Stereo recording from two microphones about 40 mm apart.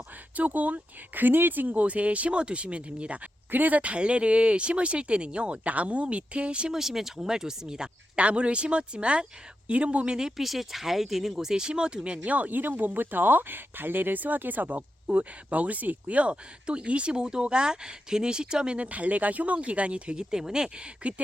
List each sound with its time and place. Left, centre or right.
0.3 s speech: right
3.5 s speech: right
6.7 s speech: centre
8.1 s speech: right
10.2 s speech: centre
10.4 s speech: centre; by 12.5 s right
12.5 s speech: right
18.8 s speech: right